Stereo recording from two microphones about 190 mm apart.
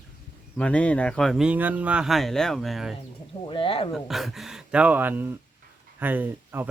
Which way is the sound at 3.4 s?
25° left (ahead or behind).